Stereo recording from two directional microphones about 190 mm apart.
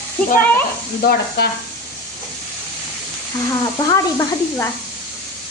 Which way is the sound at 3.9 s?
15° left (ahead or behind).